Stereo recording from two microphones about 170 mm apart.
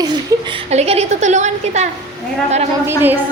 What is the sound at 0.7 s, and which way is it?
A woman's voice, 40° right (ahead or behind).